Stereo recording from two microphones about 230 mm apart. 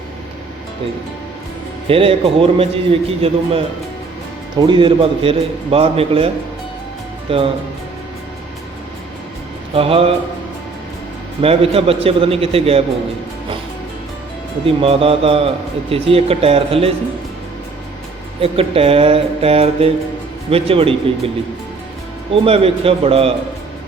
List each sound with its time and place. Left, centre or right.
1.9 s a man's voice: right
4.6 s a man's voice: right
9.7 s a man's voice: right
11.3 s a man's voice: right
14.8 s a man's voice: right
18.3 s a man's voice: right
22.3 s a man's voice: right